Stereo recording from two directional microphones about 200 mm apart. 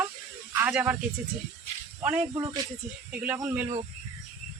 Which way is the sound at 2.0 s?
10° right (ahead or behind).